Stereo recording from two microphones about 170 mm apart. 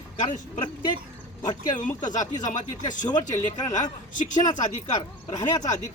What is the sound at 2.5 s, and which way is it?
Speech, 50° left (ahead or behind).